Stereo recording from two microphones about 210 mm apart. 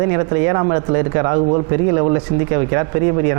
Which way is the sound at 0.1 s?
20° right (ahead or behind).